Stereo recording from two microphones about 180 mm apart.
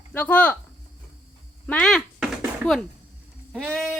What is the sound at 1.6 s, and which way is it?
Drum, 5° left (ahead or behind).